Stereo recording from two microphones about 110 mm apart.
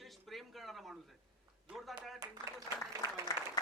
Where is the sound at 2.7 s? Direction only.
40° left (ahead or behind).